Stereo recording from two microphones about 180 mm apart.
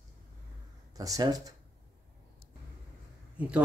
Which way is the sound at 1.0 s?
20° right (ahead or behind).